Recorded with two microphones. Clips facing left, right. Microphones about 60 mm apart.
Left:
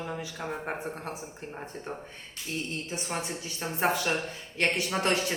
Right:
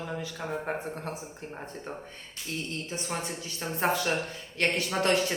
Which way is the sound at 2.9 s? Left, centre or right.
Centre.